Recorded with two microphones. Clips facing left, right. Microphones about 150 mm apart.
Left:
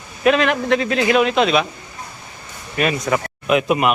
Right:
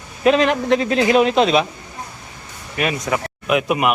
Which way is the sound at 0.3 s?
35° right (ahead or behind).